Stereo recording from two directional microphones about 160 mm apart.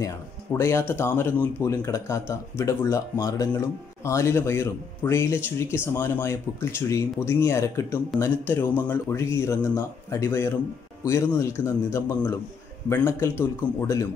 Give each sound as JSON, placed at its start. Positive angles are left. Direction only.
{"t": 0.0, "sound": "speech", "side_deg": 15}